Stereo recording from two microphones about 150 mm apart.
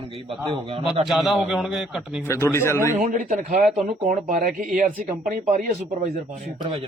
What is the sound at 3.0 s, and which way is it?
Speech, 55° right (ahead or behind).